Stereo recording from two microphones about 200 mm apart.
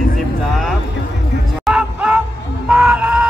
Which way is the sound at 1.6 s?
5° right (ahead or behind).